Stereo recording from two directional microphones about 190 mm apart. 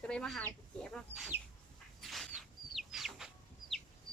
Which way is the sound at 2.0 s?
Centre (ahead or behind).